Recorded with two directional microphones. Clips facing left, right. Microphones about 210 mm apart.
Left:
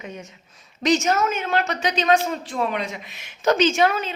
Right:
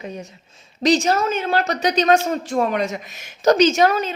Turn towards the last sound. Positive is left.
turn(degrees=-40)  # may be behind; listen again after turning